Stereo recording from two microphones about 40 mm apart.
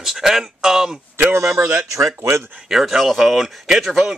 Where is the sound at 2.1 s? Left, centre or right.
Right.